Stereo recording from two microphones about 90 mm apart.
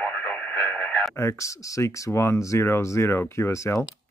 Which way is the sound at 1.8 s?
30° left (ahead or behind).